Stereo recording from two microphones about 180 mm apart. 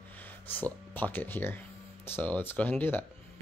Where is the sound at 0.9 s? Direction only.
10° left (ahead or behind).